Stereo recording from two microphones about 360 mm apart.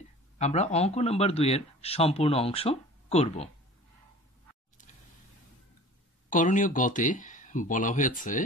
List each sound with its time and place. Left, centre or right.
0.4 s speech: centre
6.3 s speech: left